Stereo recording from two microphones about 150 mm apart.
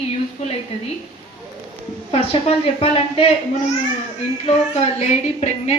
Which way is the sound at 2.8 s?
35° left (ahead or behind).